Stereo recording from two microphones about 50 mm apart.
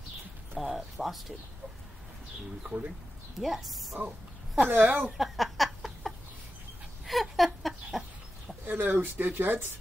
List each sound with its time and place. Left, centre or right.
0.6 s speech: centre
2.6 s speech: right
3.3 s speech: centre
4.6 s speech: right
4.9 s speech: centre
5.2 s a sound: centre
8.6 s speech: right
9.4 s speech: right